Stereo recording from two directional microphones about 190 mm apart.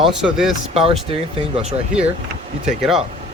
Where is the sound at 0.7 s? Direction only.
30° right (ahead or behind).